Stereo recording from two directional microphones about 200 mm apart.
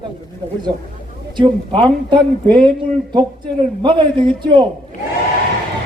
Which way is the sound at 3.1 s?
25° right (ahead or behind).